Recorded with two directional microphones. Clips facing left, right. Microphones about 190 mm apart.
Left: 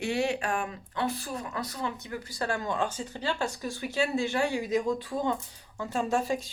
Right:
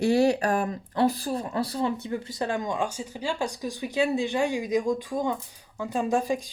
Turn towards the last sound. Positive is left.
turn(degrees=-15)  # may be behind; listen again after turning